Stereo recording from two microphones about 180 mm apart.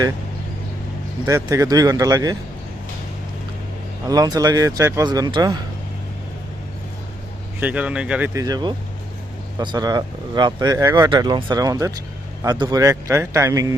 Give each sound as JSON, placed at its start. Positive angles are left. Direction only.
{"t": 1.2, "sound": "speech", "side_deg": -15}
{"t": 4.0, "sound": "speech", "side_deg": -20}
{"t": 7.6, "sound": "speech", "side_deg": -5}